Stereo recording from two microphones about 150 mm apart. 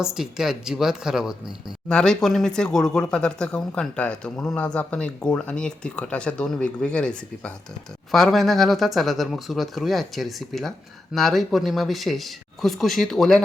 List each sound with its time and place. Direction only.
0.0 s speech: 5° right (ahead or behind)